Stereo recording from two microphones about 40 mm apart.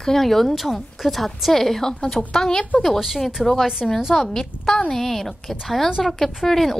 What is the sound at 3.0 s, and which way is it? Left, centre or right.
A woman's voice, centre.